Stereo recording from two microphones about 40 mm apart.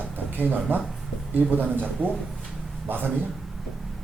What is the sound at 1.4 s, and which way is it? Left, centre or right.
Speech, right.